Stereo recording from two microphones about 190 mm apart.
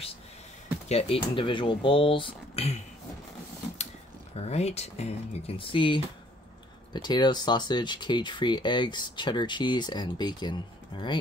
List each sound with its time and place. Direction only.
0.8 s speech: 30° left (ahead or behind)
4.4 s speech: 35° left (ahead or behind)